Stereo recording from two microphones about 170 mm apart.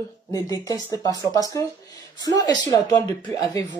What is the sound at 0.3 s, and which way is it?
Speech, 20° left (ahead or behind).